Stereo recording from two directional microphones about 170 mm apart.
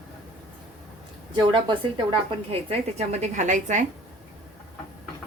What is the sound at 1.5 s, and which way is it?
A woman's voice, 30° right (ahead or behind).